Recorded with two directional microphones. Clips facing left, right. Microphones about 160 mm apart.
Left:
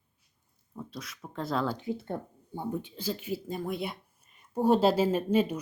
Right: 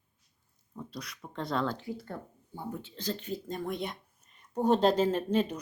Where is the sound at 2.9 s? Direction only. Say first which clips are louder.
Left 2 dB; 10° left (ahead or behind).